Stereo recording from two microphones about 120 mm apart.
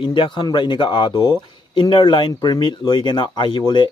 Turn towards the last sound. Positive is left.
turn(degrees=40)  # may be behind; listen again after turning